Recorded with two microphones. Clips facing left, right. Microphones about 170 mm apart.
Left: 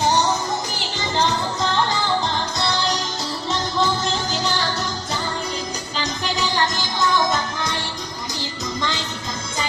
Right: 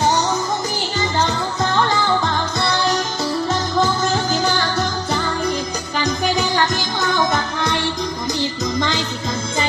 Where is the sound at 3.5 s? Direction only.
50° right (ahead or behind).